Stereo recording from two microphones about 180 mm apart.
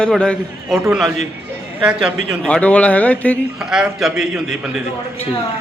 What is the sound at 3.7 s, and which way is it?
Speech, 5° right (ahead or behind).